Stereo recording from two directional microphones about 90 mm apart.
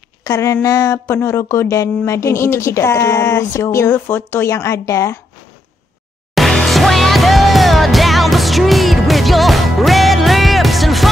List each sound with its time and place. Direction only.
0.2 s speech: 35° left (ahead or behind)
6.3 s music: centre (ahead or behind)